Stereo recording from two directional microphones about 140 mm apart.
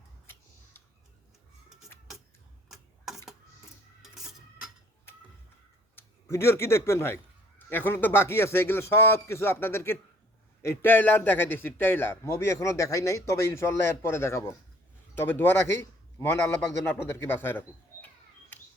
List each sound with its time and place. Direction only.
2.6 s a sound: centre (ahead or behind)
4.0 s printer: 5° right (ahead or behind)
6.0 s a man's voice: 20° left (ahead or behind)